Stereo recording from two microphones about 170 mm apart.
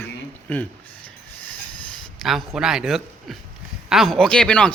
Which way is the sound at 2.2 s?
Centre (ahead or behind).